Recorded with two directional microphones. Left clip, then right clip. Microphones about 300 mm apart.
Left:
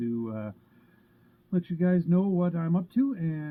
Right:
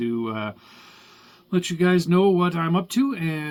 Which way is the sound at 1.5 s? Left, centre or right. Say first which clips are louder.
Right 8 dB; centre.